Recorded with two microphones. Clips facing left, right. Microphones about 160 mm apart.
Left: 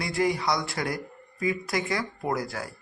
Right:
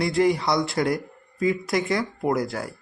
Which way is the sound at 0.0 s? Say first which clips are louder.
Right 5 dB; 25° right (ahead or behind).